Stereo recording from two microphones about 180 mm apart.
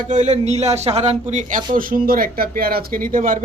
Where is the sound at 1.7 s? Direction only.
50° right (ahead or behind).